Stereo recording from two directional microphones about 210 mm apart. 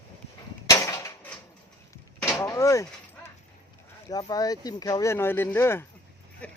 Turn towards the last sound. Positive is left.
turn(degrees=5)  # may be behind; listen again after turning